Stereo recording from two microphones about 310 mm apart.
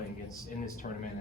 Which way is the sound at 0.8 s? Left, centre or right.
Left.